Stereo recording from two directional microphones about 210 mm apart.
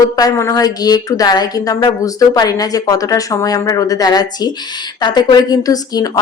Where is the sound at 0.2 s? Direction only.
15° left (ahead or behind).